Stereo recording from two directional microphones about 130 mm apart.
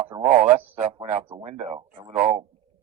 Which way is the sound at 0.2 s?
60° right (ahead or behind).